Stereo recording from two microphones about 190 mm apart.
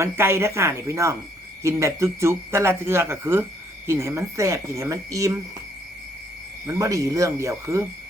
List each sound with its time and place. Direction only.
0.0 s speech: 15° right (ahead or behind)
6.7 s speech: 15° right (ahead or behind)